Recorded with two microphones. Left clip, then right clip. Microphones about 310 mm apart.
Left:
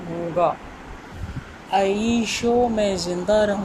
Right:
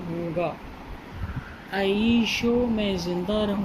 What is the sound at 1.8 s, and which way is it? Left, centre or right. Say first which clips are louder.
Speech: left 2 dB; left.